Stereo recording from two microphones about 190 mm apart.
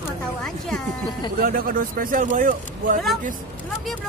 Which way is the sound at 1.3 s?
50° right (ahead or behind).